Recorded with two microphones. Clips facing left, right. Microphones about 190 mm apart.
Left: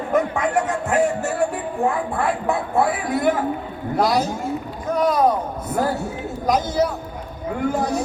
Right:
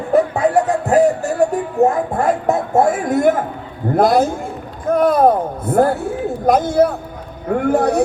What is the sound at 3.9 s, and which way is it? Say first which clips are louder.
A man's voice: right 6 dB; 50° right (ahead or behind).